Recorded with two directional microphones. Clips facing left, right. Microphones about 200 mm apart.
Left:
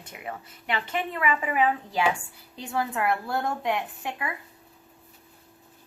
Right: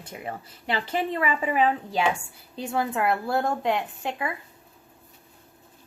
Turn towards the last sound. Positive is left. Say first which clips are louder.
# right 3 dB
turn(degrees=-25)  # may be behind; listen again after turning